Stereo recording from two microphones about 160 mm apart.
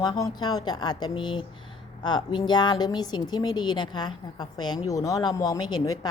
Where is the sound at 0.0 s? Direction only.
25° left (ahead or behind).